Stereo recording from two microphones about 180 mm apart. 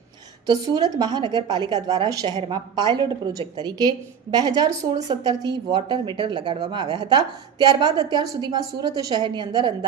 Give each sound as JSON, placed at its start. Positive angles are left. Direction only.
{"t": 0.4, "sound": "a woman's voice", "side_deg": -20}